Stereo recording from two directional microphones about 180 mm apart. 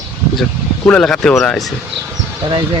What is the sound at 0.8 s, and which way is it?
Speech, 5° left (ahead or behind).